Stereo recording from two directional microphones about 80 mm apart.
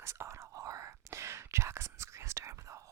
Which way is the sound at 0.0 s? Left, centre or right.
Right.